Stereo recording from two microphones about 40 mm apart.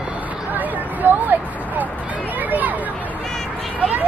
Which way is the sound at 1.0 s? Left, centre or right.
Right.